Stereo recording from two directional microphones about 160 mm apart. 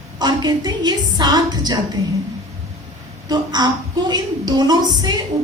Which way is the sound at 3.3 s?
25° right (ahead or behind).